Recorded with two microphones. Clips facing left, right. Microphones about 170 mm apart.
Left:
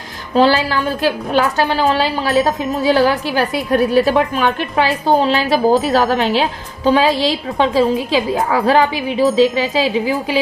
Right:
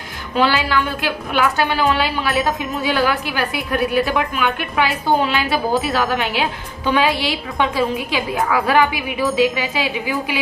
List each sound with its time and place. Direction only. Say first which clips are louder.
0.3 s a woman's voice: left 5 dB; 35° left (ahead or behind)